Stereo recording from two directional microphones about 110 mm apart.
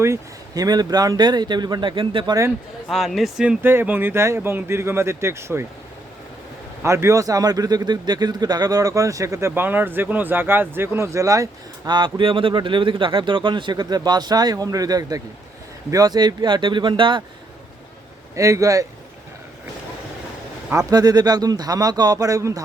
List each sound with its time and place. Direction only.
0.0 s speech: 30° right (ahead or behind); by 2.3 s 45° right (ahead or behind)
2.9 s speech: centre (ahead or behind)
3.6 s a man's voice: 20° right (ahead or behind)
6.8 s a man's voice: 25° right (ahead or behind)
11.9 s speech: 45° right (ahead or behind)
18.3 s a man's voice: 30° right (ahead or behind)
20.7 s speech: 35° right (ahead or behind)